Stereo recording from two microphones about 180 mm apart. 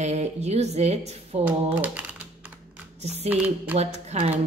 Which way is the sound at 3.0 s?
35° right (ahead or behind).